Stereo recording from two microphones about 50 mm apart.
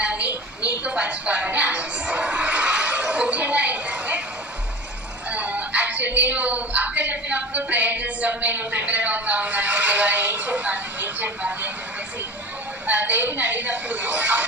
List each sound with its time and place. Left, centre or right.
0.9 s music: right
5.3 s music: right
12.9 s a sound: right